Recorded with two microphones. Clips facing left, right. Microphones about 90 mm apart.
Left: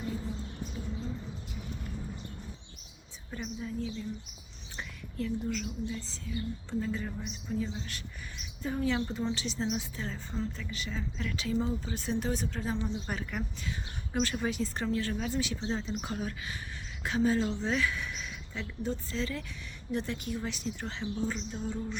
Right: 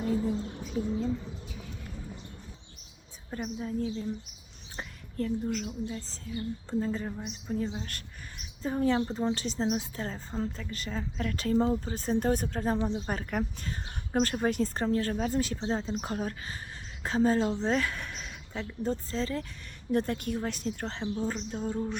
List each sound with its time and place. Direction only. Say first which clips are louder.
3.2 s a woman's voice: right 3 dB; 40° right (ahead or behind)
19.9 s a woman's voice: right 5 dB; 50° right (ahead or behind)